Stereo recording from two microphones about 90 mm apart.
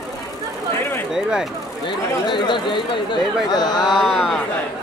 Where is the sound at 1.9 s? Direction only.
55° left (ahead or behind).